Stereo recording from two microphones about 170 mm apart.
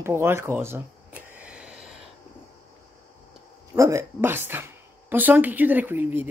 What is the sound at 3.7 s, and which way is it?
A man's voice, 15° right (ahead or behind).